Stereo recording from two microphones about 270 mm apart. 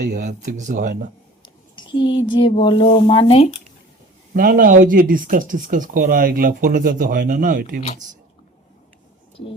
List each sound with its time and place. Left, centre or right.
0.0 s speech: right
1.7 s a sound: centre
2.2 s speech: centre
4.4 s speech: right